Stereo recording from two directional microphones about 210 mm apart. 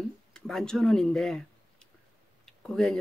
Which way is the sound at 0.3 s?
5° left (ahead or behind).